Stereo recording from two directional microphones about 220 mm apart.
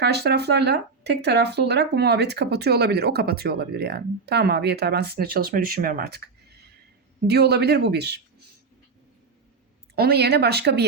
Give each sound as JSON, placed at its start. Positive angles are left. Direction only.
{"t": 0.0, "sound": "speech", "side_deg": -50}
{"t": 7.3, "sound": "speech", "side_deg": -50}
{"t": 9.9, "sound": "speech", "side_deg": -45}